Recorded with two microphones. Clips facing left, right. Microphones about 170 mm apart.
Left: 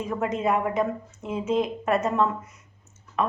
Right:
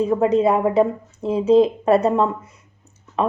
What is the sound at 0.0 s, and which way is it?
Speech, 30° right (ahead or behind).